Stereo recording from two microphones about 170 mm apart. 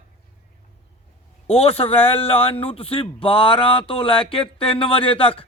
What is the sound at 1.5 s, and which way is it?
Speech, 35° left (ahead or behind).